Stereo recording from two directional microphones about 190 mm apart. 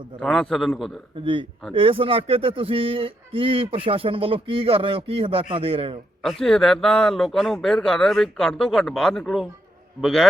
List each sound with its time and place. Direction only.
0.2 s speech: centre (ahead or behind)
1.2 s speech: 25° right (ahead or behind)
6.4 s speech: centre (ahead or behind)